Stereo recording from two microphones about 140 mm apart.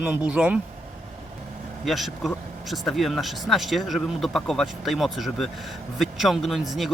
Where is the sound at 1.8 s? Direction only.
Centre (ahead or behind).